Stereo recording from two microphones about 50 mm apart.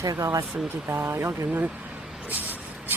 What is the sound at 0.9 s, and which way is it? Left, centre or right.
Speech, right.